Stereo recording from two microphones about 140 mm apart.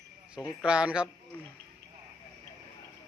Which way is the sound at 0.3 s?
5° right (ahead or behind).